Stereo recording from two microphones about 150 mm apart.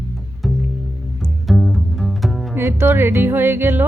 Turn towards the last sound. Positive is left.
turn(degrees=-15)  # may be behind; listen again after turning